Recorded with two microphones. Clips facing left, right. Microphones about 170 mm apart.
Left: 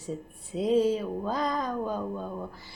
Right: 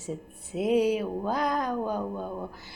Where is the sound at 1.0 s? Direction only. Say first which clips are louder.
Right 1 dB; centre (ahead or behind).